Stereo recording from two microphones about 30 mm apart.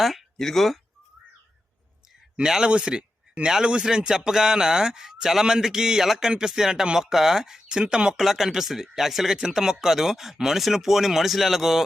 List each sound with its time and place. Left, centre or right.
0.0 s speech: centre
0.3 s speech: centre
2.6 s a man's voice: right
8.2 s speech: centre